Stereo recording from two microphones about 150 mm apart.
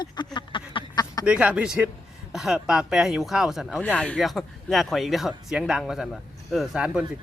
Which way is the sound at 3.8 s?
10° left (ahead or behind).